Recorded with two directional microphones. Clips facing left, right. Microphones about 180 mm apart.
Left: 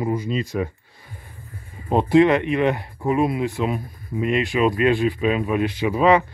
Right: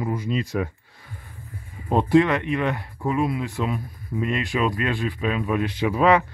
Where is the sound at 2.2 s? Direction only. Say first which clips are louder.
Left 5 dB; 15° left (ahead or behind).